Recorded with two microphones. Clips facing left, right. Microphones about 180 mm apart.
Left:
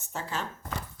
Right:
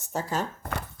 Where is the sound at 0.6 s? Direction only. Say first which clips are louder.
Right 3 dB; 60° right (ahead or behind).